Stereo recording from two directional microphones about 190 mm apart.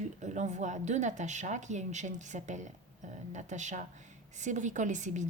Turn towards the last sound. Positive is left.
turn(degrees=-40)  # may be behind; listen again after turning